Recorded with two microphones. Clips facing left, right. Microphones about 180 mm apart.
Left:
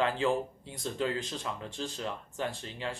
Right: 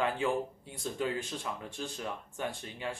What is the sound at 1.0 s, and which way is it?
Speech, 10° right (ahead or behind).